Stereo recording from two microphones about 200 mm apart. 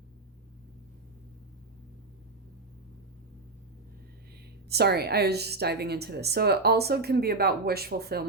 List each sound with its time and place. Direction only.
4.7 s a woman's voice: 55° right (ahead or behind)